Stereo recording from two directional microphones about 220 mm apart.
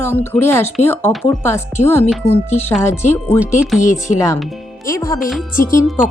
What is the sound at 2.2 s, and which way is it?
Speech, 30° left (ahead or behind).